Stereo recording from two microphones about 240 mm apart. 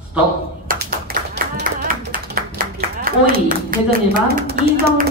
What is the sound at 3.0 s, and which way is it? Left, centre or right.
A woman's voice, right.